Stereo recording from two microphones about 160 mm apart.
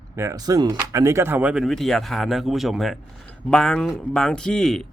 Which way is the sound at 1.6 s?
Centre (ahead or behind).